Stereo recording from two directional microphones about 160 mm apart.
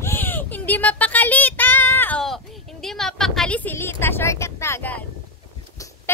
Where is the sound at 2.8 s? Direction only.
Centre (ahead or behind).